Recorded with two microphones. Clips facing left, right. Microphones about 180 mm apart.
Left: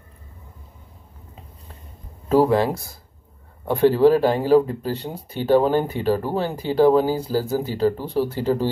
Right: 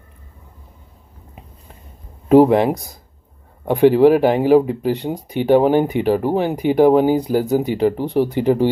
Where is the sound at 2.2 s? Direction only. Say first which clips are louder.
Right 6 dB; 20° right (ahead or behind).